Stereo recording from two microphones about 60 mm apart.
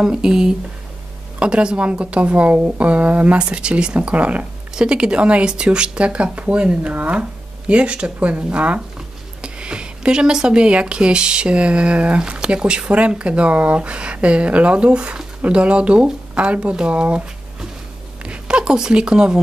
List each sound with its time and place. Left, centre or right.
0.0 s speech: centre